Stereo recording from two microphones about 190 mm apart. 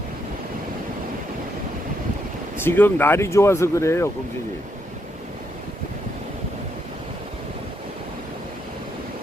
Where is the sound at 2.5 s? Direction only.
10° left (ahead or behind).